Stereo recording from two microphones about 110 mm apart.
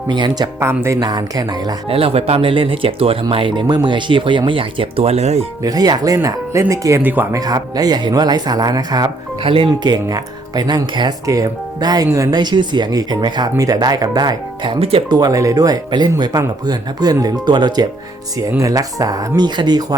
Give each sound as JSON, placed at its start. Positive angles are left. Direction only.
{"t": 0.1, "sound": "speech", "side_deg": -40}
{"t": 0.6, "sound": "speech", "side_deg": -25}
{"t": 0.9, "sound": "speech", "side_deg": -35}
{"t": 1.9, "sound": "speech", "side_deg": -60}
{"t": 5.6, "sound": "speech", "side_deg": -35}
{"t": 7.0, "sound": "speech", "side_deg": -15}
{"t": 7.3, "sound": "speech", "side_deg": -35}
{"t": 9.4, "sound": "speech", "side_deg": -55}
{"t": 15.1, "sound": "speech", "side_deg": -35}
{"t": 18.3, "sound": "speech", "side_deg": -30}